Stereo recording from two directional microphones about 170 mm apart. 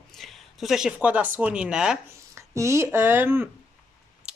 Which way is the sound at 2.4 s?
20° right (ahead or behind).